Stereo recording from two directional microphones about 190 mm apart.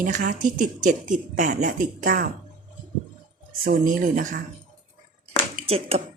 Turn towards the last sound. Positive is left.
turn(degrees=-30)  # may be behind; listen again after turning